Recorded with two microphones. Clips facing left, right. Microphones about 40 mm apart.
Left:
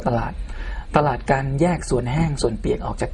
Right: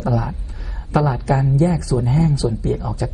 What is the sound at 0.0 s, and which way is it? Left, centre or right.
A man's voice, left.